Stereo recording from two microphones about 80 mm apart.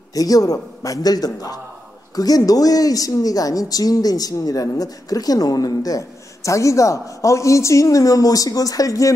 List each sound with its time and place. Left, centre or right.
0.1 s speech: left